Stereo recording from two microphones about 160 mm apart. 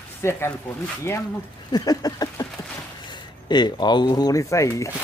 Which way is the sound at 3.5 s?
25° left (ahead or behind).